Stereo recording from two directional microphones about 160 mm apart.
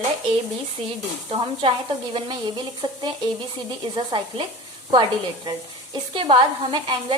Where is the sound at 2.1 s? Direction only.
30° right (ahead or behind).